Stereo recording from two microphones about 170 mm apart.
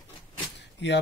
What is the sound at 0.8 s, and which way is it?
Speech, 90° left.